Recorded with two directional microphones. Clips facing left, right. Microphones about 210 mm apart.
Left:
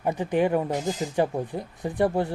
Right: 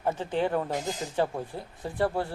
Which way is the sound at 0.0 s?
15° left (ahead or behind).